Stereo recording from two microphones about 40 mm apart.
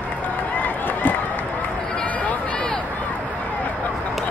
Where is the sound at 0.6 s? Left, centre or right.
Left.